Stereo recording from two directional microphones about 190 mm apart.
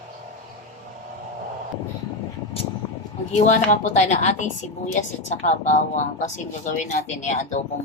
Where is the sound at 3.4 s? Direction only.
40° left (ahead or behind).